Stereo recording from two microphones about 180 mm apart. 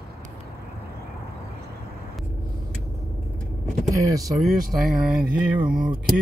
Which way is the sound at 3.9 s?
20° right (ahead or behind).